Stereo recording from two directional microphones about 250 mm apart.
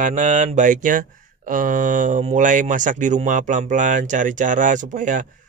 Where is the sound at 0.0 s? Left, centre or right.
Right.